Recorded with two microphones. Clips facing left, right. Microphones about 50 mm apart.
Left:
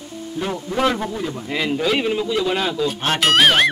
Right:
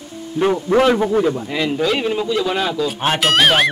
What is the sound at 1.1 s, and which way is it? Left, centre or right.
Speech, right.